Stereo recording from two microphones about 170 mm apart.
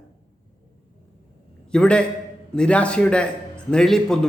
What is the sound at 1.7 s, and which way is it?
A man's voice, 5° left (ahead or behind).